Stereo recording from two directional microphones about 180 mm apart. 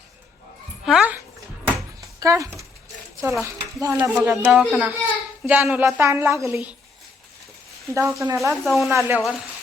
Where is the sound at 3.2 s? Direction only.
15° right (ahead or behind).